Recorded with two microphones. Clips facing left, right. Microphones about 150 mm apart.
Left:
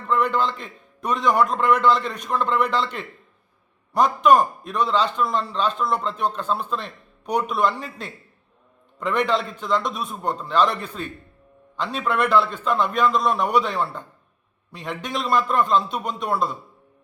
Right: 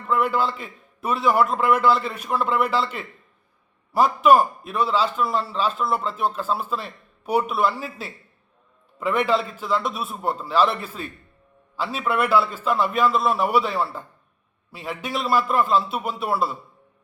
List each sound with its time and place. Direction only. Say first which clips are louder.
0.0 s a man's voice: even; 5° right (ahead or behind)